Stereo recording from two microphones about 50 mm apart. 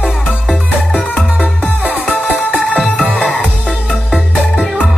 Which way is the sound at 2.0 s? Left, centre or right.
Left.